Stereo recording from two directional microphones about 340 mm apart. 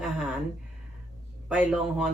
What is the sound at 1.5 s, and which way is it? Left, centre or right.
Speech, centre.